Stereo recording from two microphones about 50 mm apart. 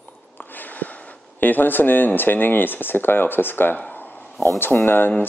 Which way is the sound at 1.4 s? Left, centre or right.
Left.